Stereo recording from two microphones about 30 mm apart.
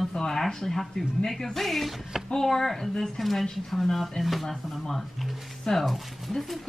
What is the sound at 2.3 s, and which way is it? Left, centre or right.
Speech, centre.